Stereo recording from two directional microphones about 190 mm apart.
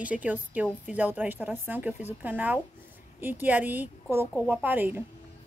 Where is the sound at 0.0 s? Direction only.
5° right (ahead or behind).